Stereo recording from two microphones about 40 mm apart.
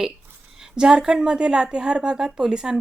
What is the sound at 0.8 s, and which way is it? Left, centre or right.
A woman's voice, centre.